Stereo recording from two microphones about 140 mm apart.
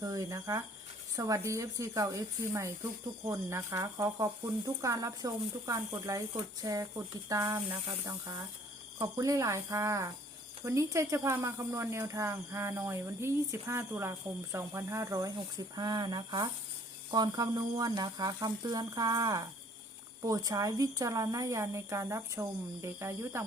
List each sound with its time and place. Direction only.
0.0 s speech: 25° right (ahead or behind)
9.0 s speech: 25° right (ahead or behind)